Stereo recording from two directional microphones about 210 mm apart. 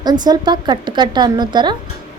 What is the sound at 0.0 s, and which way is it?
A woman's voice, 20° right (ahead or behind).